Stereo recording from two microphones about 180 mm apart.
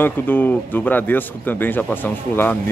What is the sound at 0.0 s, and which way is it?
Speech, 10° left (ahead or behind).